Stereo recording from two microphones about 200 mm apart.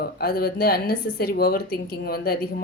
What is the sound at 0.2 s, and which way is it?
Speech, 50° left (ahead or behind).